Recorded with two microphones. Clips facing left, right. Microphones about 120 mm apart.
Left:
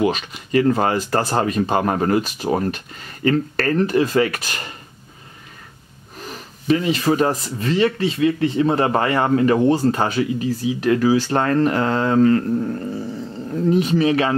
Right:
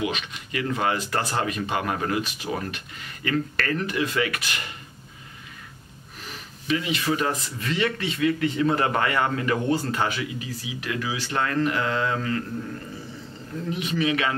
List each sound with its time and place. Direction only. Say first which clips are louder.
0.0 s speech: left 8 dB; 40° left (ahead or behind)
6.2 s speech: left 10 dB; 35° left (ahead or behind)